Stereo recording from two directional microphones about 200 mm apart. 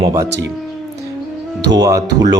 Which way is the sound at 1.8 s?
15° right (ahead or behind).